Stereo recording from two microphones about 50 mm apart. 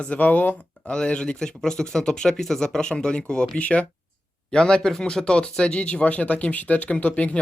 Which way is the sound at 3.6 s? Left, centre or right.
Left.